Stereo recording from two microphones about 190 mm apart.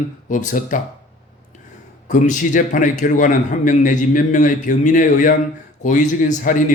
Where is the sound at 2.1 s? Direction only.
40° left (ahead or behind).